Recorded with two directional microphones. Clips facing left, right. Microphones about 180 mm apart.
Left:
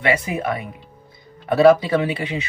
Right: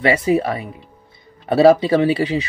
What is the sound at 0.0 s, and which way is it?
Speech, 30° right (ahead or behind).